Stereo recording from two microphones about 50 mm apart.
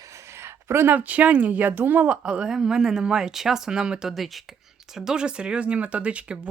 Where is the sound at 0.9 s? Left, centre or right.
Right.